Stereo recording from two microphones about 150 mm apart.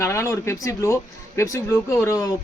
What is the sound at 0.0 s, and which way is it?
Speech, 20° left (ahead or behind).